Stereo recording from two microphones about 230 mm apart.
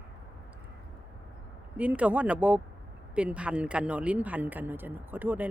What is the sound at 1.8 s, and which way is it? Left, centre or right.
Speech, centre.